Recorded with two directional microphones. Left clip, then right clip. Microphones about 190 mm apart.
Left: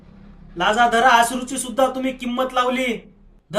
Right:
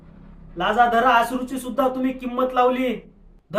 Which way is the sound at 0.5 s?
15° left (ahead or behind).